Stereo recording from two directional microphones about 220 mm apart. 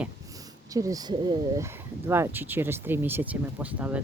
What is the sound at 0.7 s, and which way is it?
Speech, 15° right (ahead or behind).